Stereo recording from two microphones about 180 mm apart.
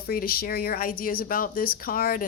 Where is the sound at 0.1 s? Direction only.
55° left (ahead or behind).